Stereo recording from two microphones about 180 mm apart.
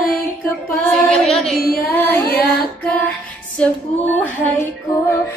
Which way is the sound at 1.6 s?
60° left (ahead or behind).